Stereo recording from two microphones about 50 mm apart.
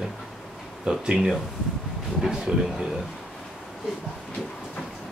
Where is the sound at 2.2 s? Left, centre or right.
Centre.